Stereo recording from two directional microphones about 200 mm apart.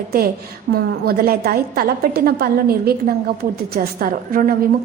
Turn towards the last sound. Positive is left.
turn(degrees=-45)  # may be behind; listen again after turning